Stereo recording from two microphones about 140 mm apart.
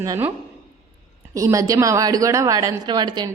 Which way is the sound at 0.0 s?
20° right (ahead or behind).